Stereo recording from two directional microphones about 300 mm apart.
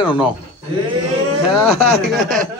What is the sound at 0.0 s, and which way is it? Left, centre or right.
Speech, centre.